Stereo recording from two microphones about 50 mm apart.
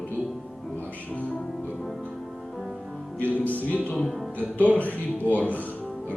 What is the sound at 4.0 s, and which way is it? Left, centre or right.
Speech, centre.